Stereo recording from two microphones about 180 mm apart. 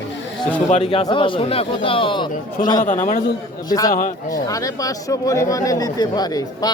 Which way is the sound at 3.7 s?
20° left (ahead or behind).